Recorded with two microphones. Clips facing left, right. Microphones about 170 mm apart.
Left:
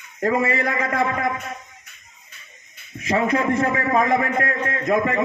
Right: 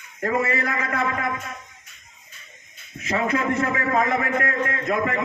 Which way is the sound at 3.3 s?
30° left (ahead or behind).